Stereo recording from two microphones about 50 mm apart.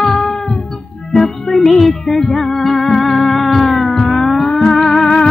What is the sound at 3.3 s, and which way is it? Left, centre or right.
Cat, centre.